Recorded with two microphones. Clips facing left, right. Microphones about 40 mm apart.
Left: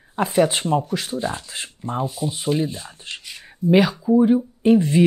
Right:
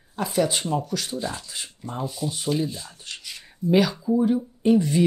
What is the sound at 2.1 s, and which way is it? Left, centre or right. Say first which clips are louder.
Speech: left 3 dB; centre.